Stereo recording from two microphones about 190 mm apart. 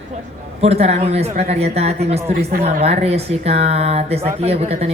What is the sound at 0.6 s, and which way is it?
Speech, 35° right (ahead or behind).